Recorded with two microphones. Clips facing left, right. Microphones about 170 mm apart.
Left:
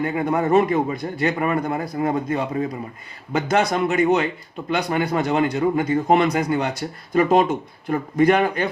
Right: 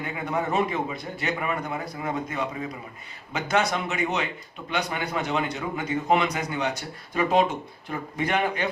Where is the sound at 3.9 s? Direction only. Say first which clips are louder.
Left 9 dB; 50° left (ahead or behind); by 5.2 s 35° left (ahead or behind).